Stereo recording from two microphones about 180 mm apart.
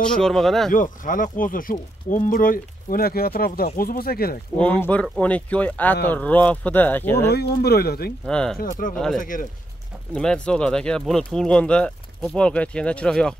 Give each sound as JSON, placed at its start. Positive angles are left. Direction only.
{"t": 0.0, "sound": "speech", "side_deg": 5}
{"t": 0.7, "sound": "speech", "side_deg": 50}
{"t": 4.6, "sound": "speech", "side_deg": 10}
{"t": 7.2, "sound": "speech", "side_deg": 65}
{"t": 8.3, "sound": "speech", "side_deg": 5}
{"t": 8.5, "sound": "speech", "side_deg": 50}
{"t": 8.9, "sound": "speech", "side_deg": 5}
{"t": 9.2, "sound": "speech", "side_deg": 50}
{"t": 10.1, "sound": "speech", "side_deg": 5}